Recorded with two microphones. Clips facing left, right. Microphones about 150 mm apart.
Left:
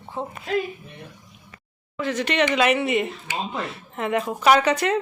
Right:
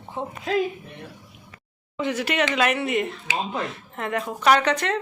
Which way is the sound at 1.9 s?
20° right (ahead or behind).